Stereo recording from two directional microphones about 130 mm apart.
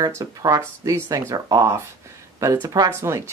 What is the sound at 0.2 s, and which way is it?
Speech, 30° right (ahead or behind).